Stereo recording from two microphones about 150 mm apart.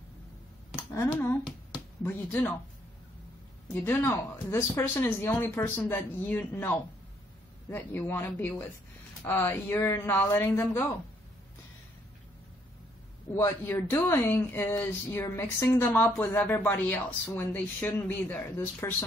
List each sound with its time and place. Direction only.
2.0 s speech: 10° left (ahead or behind)
3.7 s speech: 15° left (ahead or behind)
13.3 s speech: 15° left (ahead or behind)